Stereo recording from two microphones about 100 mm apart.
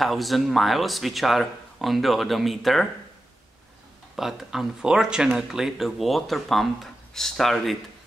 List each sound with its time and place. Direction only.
0.0 s speech: centre (ahead or behind)
4.2 s speech: 5° right (ahead or behind)